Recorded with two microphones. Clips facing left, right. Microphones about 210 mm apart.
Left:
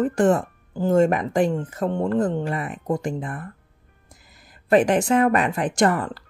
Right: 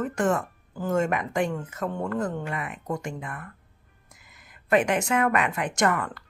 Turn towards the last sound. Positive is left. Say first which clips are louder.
# left 5 dB
turn(degrees=30)  # may be behind; listen again after turning